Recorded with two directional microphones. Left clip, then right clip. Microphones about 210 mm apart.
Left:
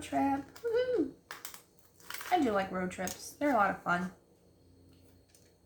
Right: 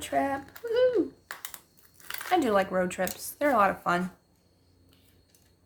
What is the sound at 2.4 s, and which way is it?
Speech, 50° right (ahead or behind).